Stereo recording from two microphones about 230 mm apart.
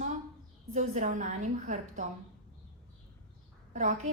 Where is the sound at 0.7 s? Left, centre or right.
Right.